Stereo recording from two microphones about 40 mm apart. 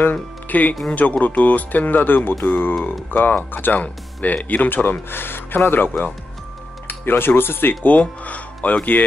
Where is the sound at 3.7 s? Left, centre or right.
Left.